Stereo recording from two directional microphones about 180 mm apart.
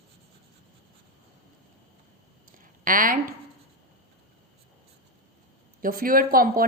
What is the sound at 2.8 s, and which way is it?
Speech, 50° right (ahead or behind).